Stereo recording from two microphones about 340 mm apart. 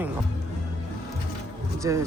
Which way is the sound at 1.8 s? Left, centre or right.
Centre.